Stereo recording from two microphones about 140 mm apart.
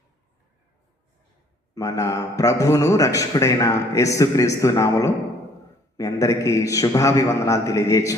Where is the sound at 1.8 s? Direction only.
25° left (ahead or behind).